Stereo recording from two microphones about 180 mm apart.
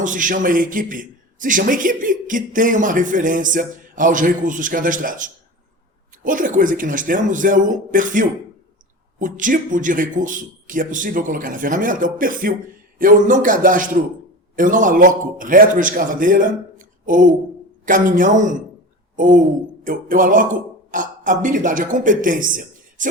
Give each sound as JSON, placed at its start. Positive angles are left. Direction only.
{"t": 0.0, "sound": "a man's voice", "side_deg": -45}